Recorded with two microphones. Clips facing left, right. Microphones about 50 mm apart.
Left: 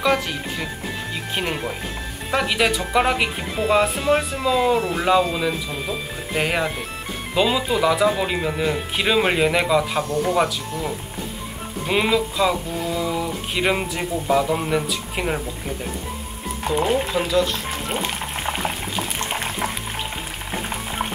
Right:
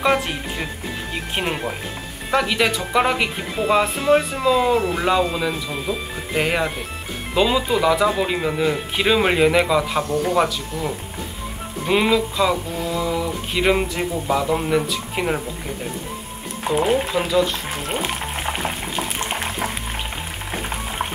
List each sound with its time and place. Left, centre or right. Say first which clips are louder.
0.0 s speech: right 1 dB; centre
16.6 s frying: right 2 dB; centre